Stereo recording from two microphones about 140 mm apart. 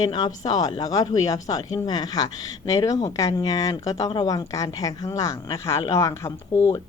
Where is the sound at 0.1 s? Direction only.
30° left (ahead or behind).